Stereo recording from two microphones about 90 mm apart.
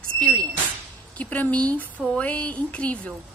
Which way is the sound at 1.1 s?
15° left (ahead or behind).